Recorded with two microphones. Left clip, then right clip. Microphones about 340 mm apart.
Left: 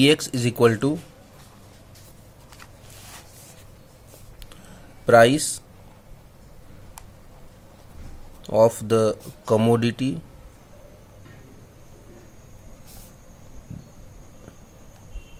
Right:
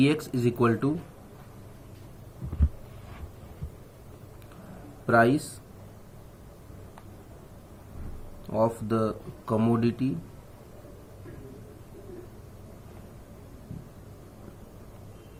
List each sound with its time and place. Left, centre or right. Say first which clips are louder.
0.0 s speech: left 6 dB; left
5.0 s speech: left 8 dB; left
8.4 s speech: left 9 dB; left